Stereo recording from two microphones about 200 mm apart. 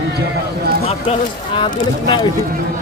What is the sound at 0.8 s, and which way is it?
Speech, 30° left (ahead or behind).